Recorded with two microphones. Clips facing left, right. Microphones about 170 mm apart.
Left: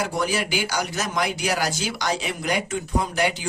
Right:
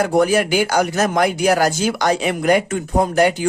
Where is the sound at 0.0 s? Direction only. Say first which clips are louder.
Right 9 dB; 55° right (ahead or behind).